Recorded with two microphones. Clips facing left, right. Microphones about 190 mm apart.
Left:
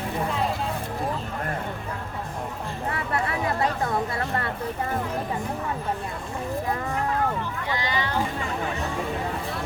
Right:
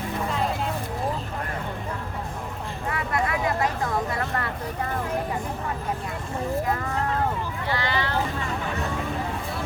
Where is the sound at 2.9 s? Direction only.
30° left (ahead or behind).